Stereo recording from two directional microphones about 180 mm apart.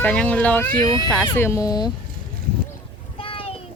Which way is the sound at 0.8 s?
20° left (ahead or behind).